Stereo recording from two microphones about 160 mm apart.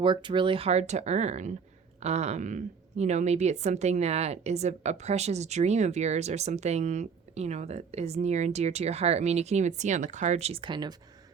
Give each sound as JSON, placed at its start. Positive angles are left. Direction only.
{"t": 0.0, "sound": "a woman's voice", "side_deg": -30}